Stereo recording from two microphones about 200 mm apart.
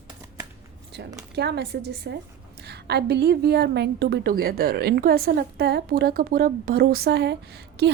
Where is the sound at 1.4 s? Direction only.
55° right (ahead or behind).